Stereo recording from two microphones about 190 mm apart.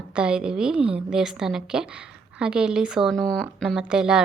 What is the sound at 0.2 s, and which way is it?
A woman's voice, 5° right (ahead or behind).